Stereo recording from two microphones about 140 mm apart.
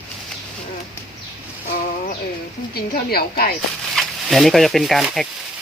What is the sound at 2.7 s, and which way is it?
Speech, 90° left.